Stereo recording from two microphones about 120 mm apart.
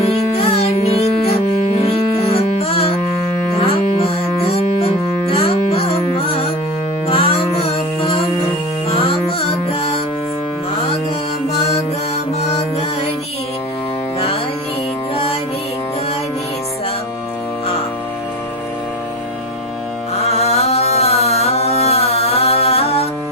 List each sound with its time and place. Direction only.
0.0 s music: 60° left (ahead or behind)
12.4 s music: 65° left (ahead or behind)
15.1 s music: 55° left (ahead or behind)
20.1 s mantra: 60° left (ahead or behind)